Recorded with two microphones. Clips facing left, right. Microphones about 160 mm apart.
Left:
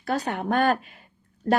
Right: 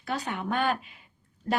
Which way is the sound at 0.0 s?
40° left (ahead or behind).